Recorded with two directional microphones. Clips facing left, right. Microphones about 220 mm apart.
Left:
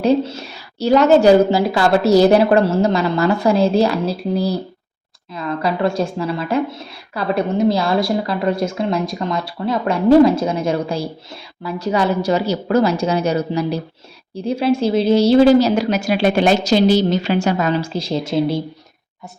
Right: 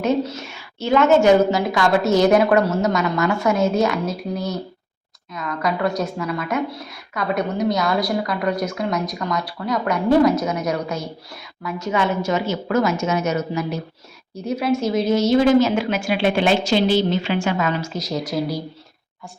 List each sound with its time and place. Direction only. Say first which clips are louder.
0.0 s a woman's voice: left 4 dB; 30° left (ahead or behind)